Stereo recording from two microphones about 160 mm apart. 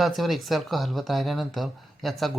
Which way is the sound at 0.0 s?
Centre (ahead or behind).